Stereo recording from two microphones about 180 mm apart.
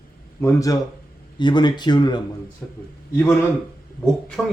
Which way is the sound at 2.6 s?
10° left (ahead or behind).